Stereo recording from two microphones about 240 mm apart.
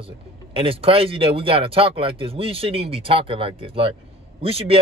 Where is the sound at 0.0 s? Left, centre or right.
Right.